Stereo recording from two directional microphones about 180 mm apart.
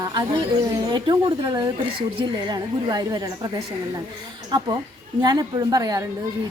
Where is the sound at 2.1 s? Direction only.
25° right (ahead or behind).